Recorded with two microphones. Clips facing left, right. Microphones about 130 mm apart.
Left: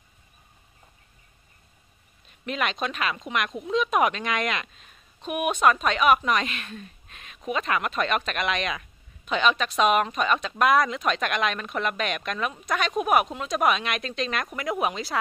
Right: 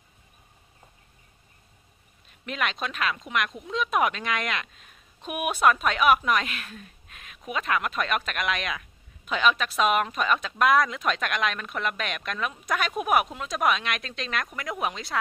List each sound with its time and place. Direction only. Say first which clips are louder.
2.4 s speech: left 2 dB; centre (ahead or behind)